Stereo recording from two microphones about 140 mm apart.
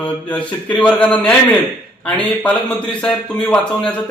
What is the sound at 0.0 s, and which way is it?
A man's voice, 10° left (ahead or behind).